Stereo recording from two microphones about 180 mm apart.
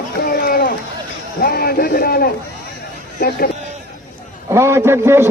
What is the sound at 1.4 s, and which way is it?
A man's voice, 55° left (ahead or behind).